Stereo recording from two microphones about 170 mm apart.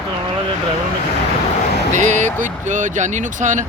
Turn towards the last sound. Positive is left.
turn(degrees=-45)  # may be behind; listen again after turning